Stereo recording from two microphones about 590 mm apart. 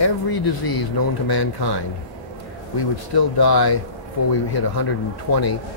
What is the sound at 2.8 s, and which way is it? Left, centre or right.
Speech, left.